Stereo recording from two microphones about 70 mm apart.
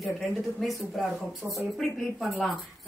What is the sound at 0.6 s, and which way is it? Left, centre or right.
Speech, centre.